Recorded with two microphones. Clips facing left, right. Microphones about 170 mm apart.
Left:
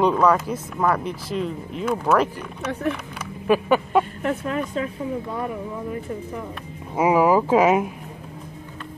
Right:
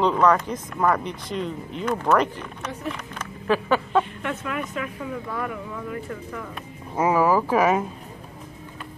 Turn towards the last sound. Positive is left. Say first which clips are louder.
# left 3 dB
turn(degrees=15)  # may be behind; listen again after turning